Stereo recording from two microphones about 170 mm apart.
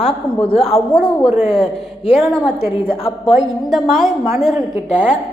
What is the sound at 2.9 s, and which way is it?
Speech, 35° left (ahead or behind).